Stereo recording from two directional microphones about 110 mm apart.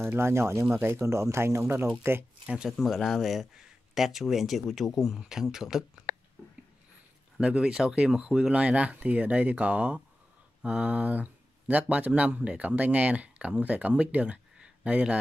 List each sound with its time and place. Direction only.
0.0 s speech: 20° right (ahead or behind)
2.4 s speech: 5° right (ahead or behind)
7.3 s speech: 5° right (ahead or behind)